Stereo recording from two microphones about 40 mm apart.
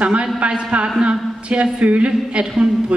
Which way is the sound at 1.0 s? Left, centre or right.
Right.